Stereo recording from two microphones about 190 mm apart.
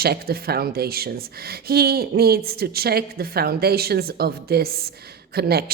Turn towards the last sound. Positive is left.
turn(degrees=-55)  # may be behind; listen again after turning